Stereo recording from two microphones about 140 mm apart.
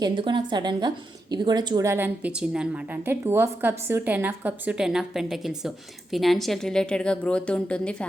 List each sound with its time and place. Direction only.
0.0 s a woman's voice: 35° right (ahead or behind)
1.9 s a woman's voice: 15° right (ahead or behind); by 8.0 s 10° left (ahead or behind)